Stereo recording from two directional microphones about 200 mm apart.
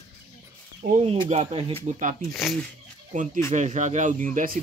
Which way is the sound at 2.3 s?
Centre (ahead or behind).